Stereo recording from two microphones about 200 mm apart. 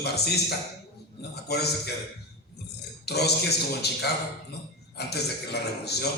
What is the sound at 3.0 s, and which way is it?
A man's voice, 55° left (ahead or behind).